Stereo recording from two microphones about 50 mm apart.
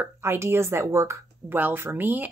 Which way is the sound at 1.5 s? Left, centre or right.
Right.